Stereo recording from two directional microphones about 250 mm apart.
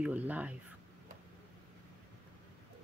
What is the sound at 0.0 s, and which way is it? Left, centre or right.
Speech, centre.